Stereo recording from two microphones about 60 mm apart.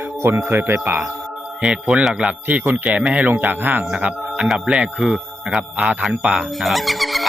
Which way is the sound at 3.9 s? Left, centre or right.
Right.